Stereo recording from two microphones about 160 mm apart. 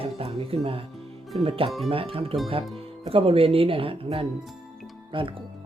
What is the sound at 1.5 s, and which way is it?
Speech, 35° right (ahead or behind).